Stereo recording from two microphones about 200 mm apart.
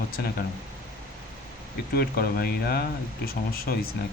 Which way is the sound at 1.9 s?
50° left (ahead or behind).